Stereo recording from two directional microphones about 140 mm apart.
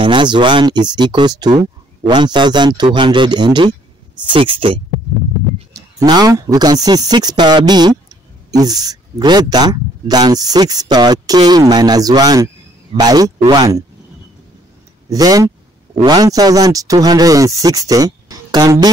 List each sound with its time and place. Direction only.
0.0 s speech: 35° right (ahead or behind)
5.7 s speech: 25° right (ahead or behind)
15.0 s a sound: 25° right (ahead or behind)
16.1 s speech: 25° right (ahead or behind)